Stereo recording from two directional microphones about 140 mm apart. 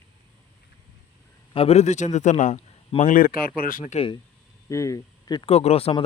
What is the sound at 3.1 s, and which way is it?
Speech, 85° left.